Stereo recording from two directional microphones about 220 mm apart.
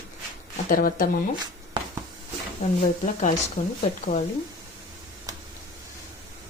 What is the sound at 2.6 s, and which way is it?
Speech, 30° left (ahead or behind).